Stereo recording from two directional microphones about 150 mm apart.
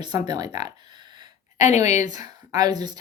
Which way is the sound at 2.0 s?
25° right (ahead or behind).